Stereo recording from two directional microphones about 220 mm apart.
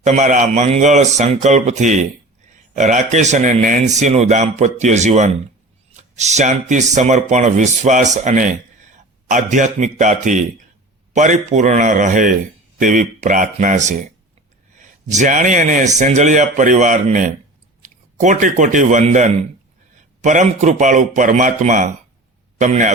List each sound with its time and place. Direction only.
0.0 s speech: 35° right (ahead or behind)
15.1 s speech: 35° right (ahead or behind)